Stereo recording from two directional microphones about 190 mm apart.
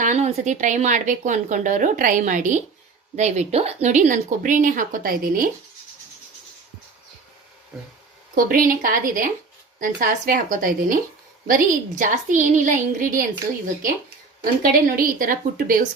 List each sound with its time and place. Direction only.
0.0 s a woman's voice: 40° right (ahead or behind)
8.4 s a woman's voice: 45° right (ahead or behind)
14.6 s a woman's voice: 50° right (ahead or behind)